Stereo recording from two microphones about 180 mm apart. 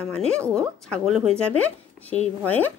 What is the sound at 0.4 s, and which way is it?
Speech, 15° right (ahead or behind).